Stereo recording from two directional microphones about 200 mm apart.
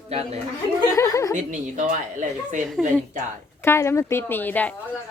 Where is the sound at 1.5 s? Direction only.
40° right (ahead or behind).